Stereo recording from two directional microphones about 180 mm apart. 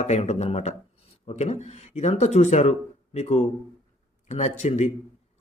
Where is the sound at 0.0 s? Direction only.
40° left (ahead or behind).